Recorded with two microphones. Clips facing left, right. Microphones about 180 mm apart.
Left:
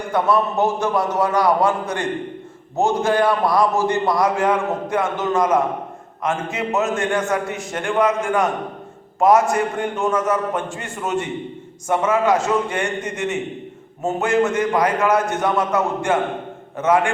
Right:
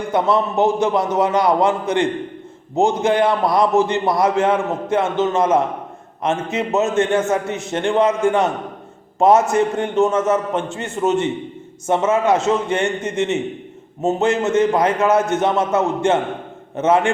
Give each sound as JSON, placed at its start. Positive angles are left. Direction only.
{"t": 0.1, "sound": "a man's voice", "side_deg": -20}